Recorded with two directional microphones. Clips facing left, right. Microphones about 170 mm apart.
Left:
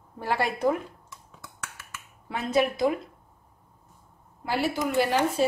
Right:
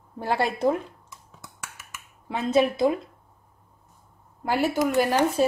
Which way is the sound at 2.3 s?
25° right (ahead or behind).